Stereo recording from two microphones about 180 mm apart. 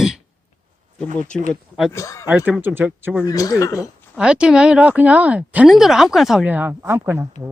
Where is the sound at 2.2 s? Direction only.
10° right (ahead or behind).